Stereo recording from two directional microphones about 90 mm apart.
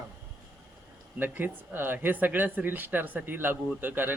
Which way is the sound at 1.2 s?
20° right (ahead or behind).